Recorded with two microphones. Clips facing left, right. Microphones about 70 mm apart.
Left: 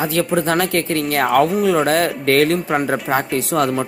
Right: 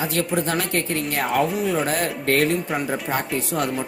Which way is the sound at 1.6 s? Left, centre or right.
Left.